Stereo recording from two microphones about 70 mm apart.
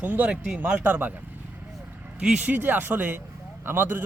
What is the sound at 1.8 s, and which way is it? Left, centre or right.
Vehicle, right.